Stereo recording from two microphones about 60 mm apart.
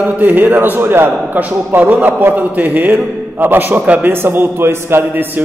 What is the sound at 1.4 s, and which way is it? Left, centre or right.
A man's voice, right.